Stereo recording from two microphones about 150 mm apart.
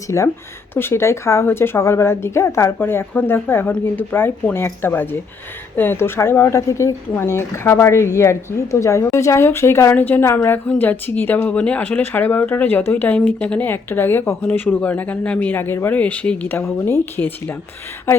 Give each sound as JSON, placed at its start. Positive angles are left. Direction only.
{"t": 0.1, "sound": "speech", "side_deg": 20}